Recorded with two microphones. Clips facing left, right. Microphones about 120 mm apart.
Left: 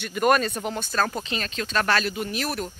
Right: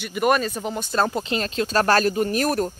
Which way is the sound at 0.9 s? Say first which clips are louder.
Right 5 dB; 25° right (ahead or behind).